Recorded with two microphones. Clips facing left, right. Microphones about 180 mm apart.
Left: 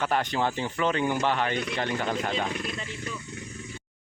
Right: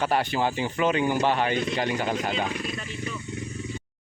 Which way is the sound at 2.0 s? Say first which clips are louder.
Right 2 dB; 5° right (ahead or behind).